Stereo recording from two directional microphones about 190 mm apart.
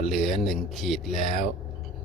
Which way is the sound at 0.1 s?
Centre (ahead or behind).